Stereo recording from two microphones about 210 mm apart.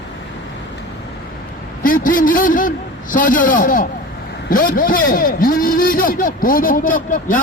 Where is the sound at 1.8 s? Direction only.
40° left (ahead or behind).